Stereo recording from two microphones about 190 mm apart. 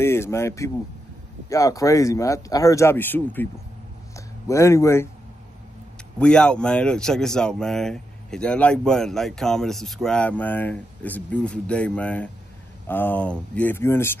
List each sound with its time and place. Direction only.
0.0 s speech: 15° left (ahead or behind)
4.5 s speech: 15° left (ahead or behind)
6.1 s speech: 5° left (ahead or behind)